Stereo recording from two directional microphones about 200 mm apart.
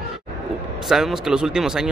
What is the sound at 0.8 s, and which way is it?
Speech, centre (ahead or behind).